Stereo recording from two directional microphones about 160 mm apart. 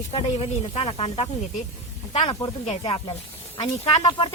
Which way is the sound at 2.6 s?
40° left (ahead or behind).